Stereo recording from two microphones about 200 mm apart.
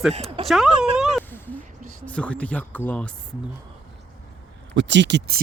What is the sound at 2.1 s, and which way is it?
Speech, 5° left (ahead or behind).